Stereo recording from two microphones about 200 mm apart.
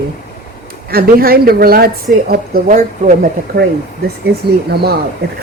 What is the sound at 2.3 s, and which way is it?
Speech, 40° right (ahead or behind).